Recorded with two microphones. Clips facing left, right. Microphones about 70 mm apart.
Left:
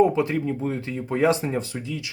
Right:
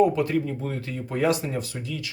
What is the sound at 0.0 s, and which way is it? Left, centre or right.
Speech, left.